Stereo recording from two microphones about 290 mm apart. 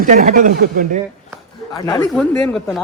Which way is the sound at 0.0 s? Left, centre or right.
Right.